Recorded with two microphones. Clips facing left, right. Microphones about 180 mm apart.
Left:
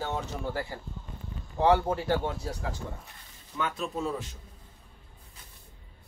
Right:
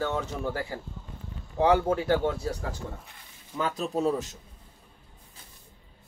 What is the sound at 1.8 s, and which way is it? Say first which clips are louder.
Speech: right 4 dB; 60° right (ahead or behind).